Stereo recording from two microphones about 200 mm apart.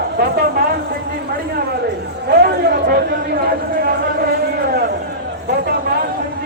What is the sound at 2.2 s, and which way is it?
Speech, 50° right (ahead or behind).